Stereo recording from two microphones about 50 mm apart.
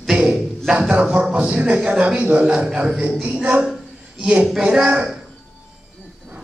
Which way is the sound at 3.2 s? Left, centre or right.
Right.